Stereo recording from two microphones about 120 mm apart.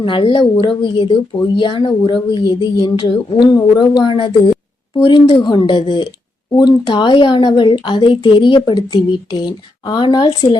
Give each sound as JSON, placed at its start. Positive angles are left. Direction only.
{"t": 0.0, "sound": "speech", "side_deg": 45}
{"t": 5.0, "sound": "speech", "side_deg": 50}
{"t": 5.4, "sound": "speech", "side_deg": 40}